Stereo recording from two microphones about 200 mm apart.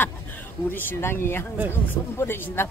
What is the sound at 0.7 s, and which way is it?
Speech, 10° left (ahead or behind).